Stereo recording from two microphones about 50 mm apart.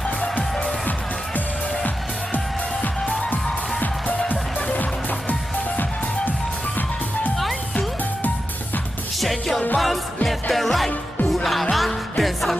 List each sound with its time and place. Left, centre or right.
0.2 s music: left
2.3 s music: left
9.2 s music: centre